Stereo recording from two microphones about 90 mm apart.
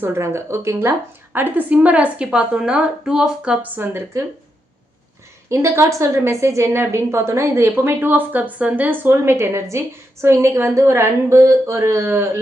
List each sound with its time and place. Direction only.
0.0 s a woman's voice: 30° right (ahead or behind); by 3.7 s 10° right (ahead or behind)
3.8 s a woman's voice: 25° right (ahead or behind)
5.5 s a woman's voice: 30° right (ahead or behind)